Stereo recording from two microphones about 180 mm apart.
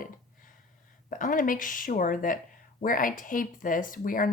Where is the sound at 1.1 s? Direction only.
50° left (ahead or behind).